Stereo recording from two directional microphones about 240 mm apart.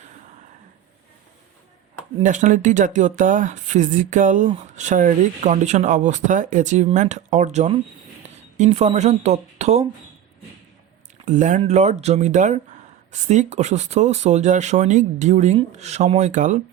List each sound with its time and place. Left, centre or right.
2.1 s speech: right
11.3 s speech: right